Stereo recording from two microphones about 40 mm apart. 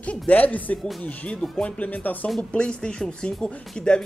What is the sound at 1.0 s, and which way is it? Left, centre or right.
Speech, left.